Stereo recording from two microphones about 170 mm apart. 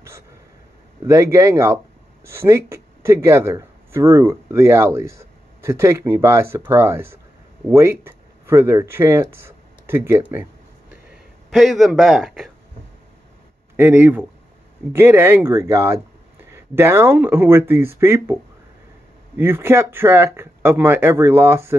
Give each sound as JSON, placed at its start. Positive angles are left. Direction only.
{"t": 1.0, "sound": "speech", "side_deg": -15}
{"t": 11.1, "sound": "speech", "side_deg": 0}
{"t": 13.7, "sound": "speech", "side_deg": -10}
{"t": 19.3, "sound": "speech", "side_deg": -15}